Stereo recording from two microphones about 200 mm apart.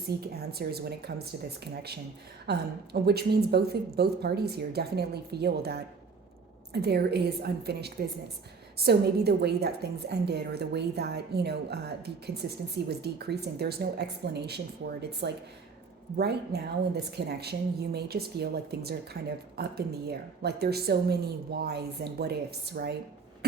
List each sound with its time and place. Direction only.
0.3 s a woman's voice: 50° right (ahead or behind)
2.5 s a woman's voice: 50° right (ahead or behind)